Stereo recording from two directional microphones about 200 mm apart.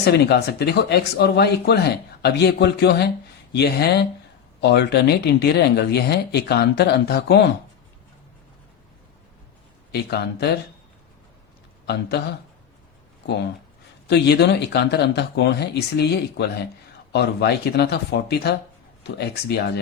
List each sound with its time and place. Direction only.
0.0 s speech: 55° left (ahead or behind)
9.9 s speech: 55° left (ahead or behind)
11.9 s speech: 55° left (ahead or behind)
14.1 s speech: 55° left (ahead or behind)